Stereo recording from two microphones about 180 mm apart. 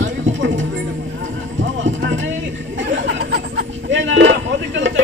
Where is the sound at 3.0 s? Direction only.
70° right (ahead or behind).